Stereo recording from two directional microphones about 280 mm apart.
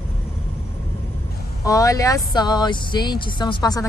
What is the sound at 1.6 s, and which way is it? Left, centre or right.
Speech, centre.